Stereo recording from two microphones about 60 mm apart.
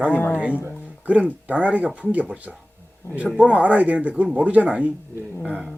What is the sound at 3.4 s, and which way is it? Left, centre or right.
Speech, right.